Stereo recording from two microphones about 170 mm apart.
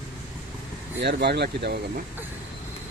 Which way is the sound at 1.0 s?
75° right (ahead or behind).